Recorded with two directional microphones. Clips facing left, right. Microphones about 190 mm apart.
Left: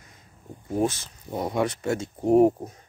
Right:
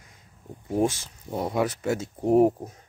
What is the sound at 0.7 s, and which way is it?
Speech, 15° right (ahead or behind).